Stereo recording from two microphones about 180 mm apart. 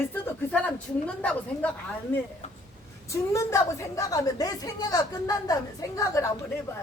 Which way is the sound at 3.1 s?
15° left (ahead or behind).